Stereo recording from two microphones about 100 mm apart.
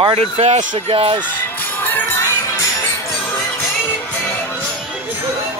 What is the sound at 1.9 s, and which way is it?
Music, 20° left (ahead or behind).